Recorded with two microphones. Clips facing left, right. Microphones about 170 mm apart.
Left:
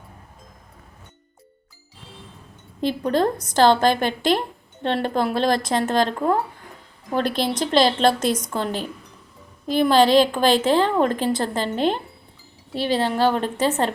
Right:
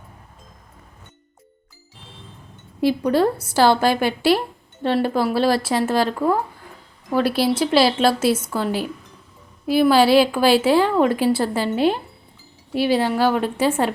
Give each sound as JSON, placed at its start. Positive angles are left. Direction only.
{"t": 3.1, "sound": "speech", "side_deg": -10}